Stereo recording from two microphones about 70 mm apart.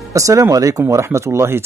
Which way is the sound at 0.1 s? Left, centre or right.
Right.